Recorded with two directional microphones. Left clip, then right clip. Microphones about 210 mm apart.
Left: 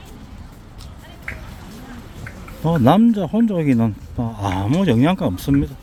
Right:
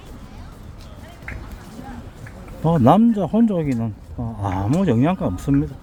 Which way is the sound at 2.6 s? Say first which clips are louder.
Even; centre (ahead or behind).